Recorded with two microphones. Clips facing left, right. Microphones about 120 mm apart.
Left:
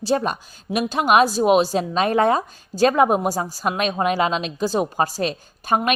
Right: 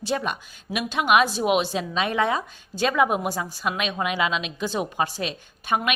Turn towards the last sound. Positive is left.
turn(degrees=40)  # may be behind; listen again after turning